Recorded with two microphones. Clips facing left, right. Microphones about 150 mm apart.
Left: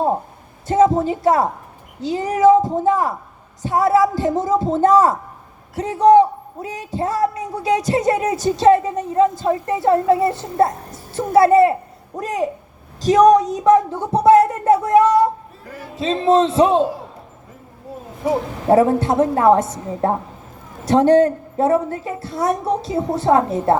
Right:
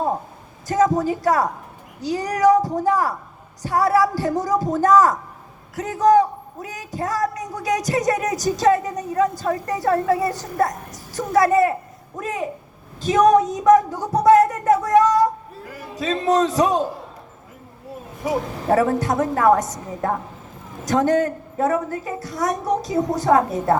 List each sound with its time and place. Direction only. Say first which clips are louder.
0.7 s a woman's voice: left 3 dB; 25° left (ahead or behind)
13.0 s a sound: left 3 dB; 35° left (ahead or behind)
16.0 s a man's voice: left 4 dB; 25° left (ahead or behind)
18.3 s a man's voice: left 4 dB; 25° left (ahead or behind)